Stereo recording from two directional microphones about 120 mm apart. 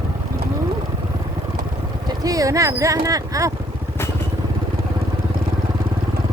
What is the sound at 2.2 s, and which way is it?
Speech, 30° right (ahead or behind).